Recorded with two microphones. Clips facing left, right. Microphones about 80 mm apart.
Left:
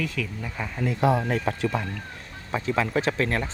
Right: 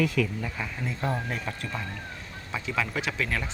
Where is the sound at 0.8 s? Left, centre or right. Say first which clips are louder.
Left 9 dB; left.